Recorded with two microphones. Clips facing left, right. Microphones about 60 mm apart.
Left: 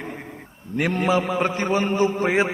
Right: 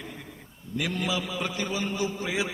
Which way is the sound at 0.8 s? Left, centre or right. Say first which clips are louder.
Left 9 dB; left.